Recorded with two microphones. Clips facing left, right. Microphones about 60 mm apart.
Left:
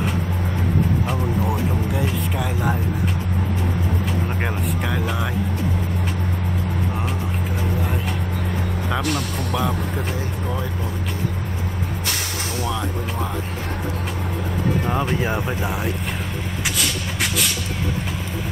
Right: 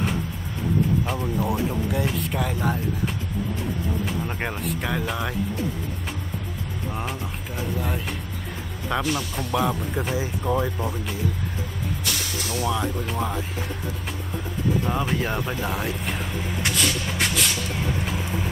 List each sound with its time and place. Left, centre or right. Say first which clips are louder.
1.0 s speech: left 2 dB; centre
4.4 s speech: left 3 dB; centre
9.0 s speech: left 3 dB; left
9.6 s speech: right 1 dB; centre
15.0 s speech: left 3 dB; centre
16.6 s shuffle: right 1 dB; centre